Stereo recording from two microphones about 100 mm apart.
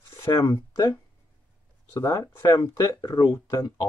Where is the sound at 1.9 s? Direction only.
30° left (ahead or behind).